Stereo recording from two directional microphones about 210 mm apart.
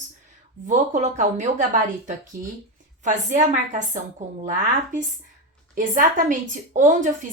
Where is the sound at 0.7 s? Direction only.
35° right (ahead or behind).